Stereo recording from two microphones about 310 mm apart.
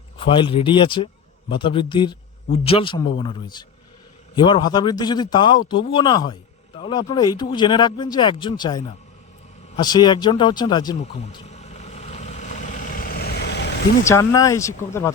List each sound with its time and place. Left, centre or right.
0.2 s speech: centre
9.7 s a sound: centre; by 13.7 s left
14.0 s speech: centre